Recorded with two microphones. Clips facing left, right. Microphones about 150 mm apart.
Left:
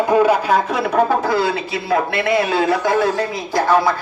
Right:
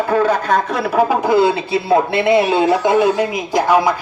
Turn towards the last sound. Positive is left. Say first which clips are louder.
# right 2 dB
turn(degrees=-15)  # may be behind; listen again after turning